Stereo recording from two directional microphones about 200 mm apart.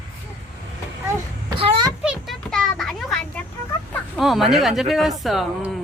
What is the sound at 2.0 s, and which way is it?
Children playing, centre (ahead or behind).